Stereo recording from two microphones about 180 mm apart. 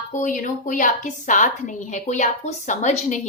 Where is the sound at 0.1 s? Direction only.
45° left (ahead or behind).